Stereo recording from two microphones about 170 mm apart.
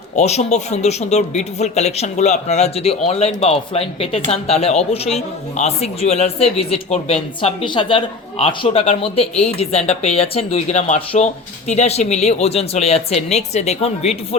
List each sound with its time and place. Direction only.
0.2 s a man's voice: 40° left (ahead or behind)